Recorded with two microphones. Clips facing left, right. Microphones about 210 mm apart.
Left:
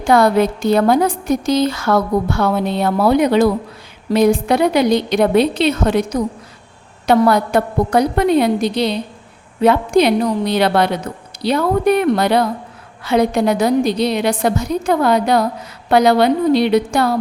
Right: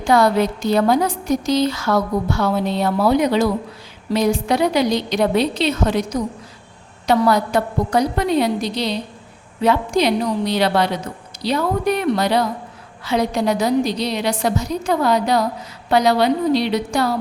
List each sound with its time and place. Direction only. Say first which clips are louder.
0.0 s a woman's voice: left 3 dB; 55° left (ahead or behind)